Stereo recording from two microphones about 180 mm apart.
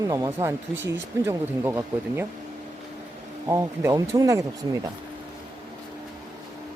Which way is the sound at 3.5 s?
15° right (ahead or behind).